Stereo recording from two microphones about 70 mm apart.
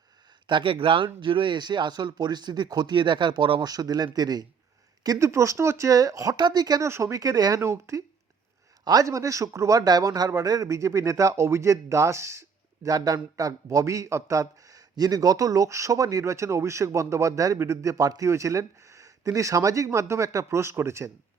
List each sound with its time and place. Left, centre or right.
0.5 s speech: right
5.0 s speech: right
5.9 s speech: right
6.8 s speech: right
7.6 s speech: right
8.8 s speech: right
10.7 s speech: right
13.3 s speech: right